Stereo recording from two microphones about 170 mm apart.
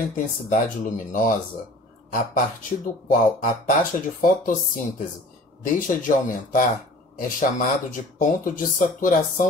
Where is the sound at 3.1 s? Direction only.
55° left (ahead or behind).